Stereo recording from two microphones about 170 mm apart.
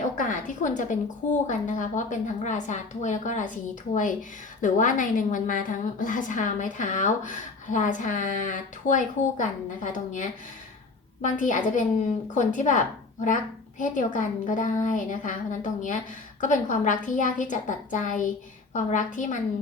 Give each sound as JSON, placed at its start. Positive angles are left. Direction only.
{"t": 0.2, "sound": "a woman's voice", "side_deg": 50}